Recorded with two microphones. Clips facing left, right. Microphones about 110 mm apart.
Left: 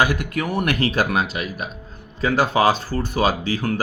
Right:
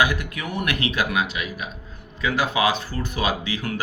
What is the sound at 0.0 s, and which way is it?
Speech, 40° left (ahead or behind).